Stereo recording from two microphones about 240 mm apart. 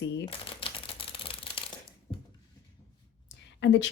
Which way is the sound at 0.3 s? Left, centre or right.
Left.